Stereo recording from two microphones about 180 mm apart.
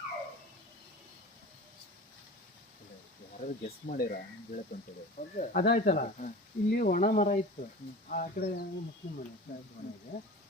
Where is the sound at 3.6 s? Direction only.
55° left (ahead or behind).